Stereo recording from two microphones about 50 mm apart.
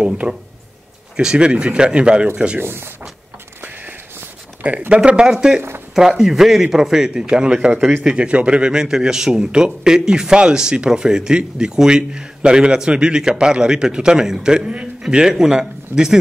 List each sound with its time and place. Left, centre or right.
0.0 s speech: right
2.6 s speech: right
4.6 s speech: right; by 16.2 s centre